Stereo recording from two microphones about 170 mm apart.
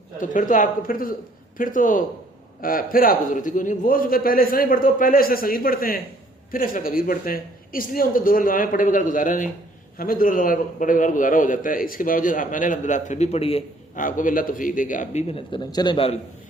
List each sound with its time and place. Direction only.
0.2 s a man's voice: 50° left (ahead or behind); by 13.7 s 35° left (ahead or behind)
13.9 s a man's voice: 50° left (ahead or behind)
15.3 s a man's voice: 30° left (ahead or behind)